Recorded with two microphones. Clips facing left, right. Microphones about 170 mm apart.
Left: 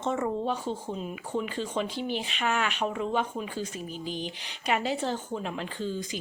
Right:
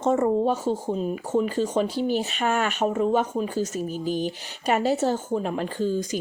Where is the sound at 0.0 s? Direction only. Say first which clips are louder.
Right 8 dB; 40° right (ahead or behind).